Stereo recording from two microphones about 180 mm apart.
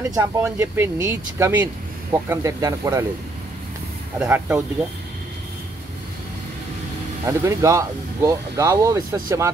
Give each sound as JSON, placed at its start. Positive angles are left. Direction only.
{"t": 0.1, "sound": "speech", "side_deg": -15}
{"t": 4.2, "sound": "speech", "side_deg": -10}
{"t": 7.2, "sound": "speech", "side_deg": -15}